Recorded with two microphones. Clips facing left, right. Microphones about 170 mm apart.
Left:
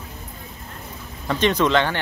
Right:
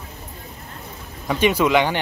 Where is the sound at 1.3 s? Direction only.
10° right (ahead or behind).